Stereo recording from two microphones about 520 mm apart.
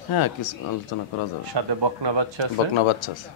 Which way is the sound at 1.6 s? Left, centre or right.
Right.